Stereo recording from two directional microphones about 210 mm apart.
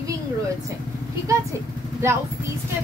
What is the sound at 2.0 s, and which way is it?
Speech, 10° right (ahead or behind).